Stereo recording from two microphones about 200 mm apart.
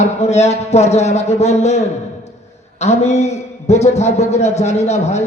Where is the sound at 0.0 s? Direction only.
35° left (ahead or behind).